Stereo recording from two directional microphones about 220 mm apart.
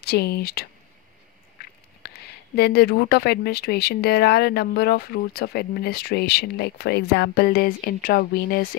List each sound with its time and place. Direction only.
0.0 s speech: 45° left (ahead or behind)
2.0 s speech: 45° left (ahead or behind)